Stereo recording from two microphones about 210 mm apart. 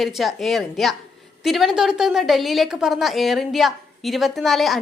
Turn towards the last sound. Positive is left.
turn(degrees=0)  # may be behind; listen again after turning